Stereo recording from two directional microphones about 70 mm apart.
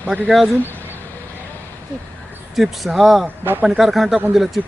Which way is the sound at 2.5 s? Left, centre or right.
Centre.